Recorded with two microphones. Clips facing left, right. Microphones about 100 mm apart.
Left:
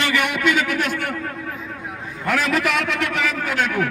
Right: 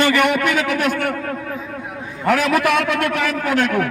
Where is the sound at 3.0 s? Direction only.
55° right (ahead or behind).